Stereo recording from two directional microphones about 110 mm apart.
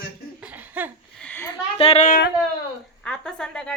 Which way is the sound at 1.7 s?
65° left (ahead or behind).